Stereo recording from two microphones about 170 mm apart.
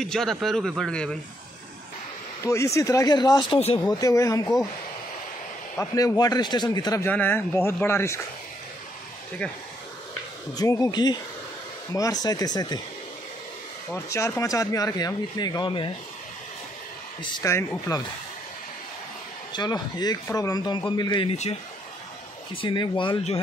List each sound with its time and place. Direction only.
0.0 s a man's voice: centre (ahead or behind)
2.4 s speech: 15° left (ahead or behind); by 3.8 s 35° left (ahead or behind)
3.8 s speech: 20° left (ahead or behind)
5.8 s speech: 20° left (ahead or behind)
7.1 s speech: 10° left (ahead or behind)
9.4 s a man's voice: 5° left (ahead or behind)
10.5 s speech: 20° left (ahead or behind)
13.9 s speech: 15° left (ahead or behind)
17.2 s speech: 15° left (ahead or behind)
19.5 s speech: 25° left (ahead or behind)
22.6 s speech: 25° left (ahead or behind)